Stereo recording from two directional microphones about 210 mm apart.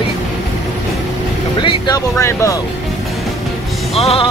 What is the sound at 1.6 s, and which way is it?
Music, 20° left (ahead or behind).